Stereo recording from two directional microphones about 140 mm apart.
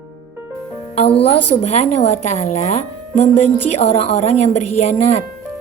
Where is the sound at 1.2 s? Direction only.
45° left (ahead or behind).